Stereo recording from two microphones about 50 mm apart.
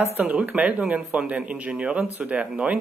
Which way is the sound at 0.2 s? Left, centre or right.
Right.